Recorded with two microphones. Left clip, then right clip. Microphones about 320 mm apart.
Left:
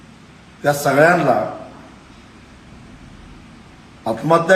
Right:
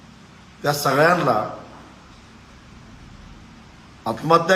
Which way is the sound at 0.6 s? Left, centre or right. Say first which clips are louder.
Left 4 dB; centre.